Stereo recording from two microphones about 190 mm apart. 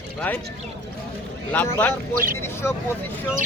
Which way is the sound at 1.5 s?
10° left (ahead or behind).